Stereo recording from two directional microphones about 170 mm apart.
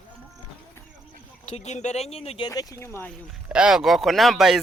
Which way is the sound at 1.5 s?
40° left (ahead or behind).